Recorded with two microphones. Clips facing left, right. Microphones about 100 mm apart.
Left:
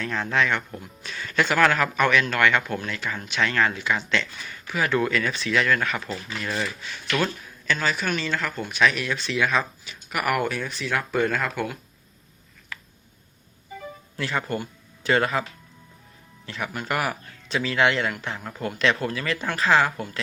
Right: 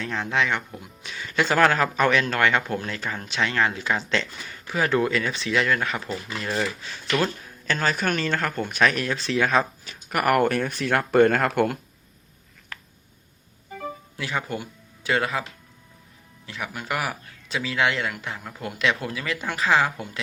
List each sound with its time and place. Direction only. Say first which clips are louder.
0.0 s speech: left 1 dB; 20° right (ahead or behind)
7.7 s speech: right 1 dB; 45° right (ahead or behind); by 11.8 s 65° right (ahead or behind)
14.2 s speech: left 2 dB; 10° right (ahead or behind)
16.5 s speech: left 2 dB; 5° right (ahead or behind)